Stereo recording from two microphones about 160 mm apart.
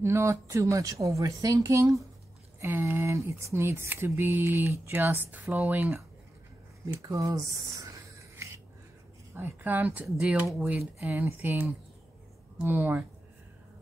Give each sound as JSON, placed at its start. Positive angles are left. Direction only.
{"t": 0.0, "sound": "speech", "side_deg": -15}
{"t": 9.3, "sound": "speech", "side_deg": -10}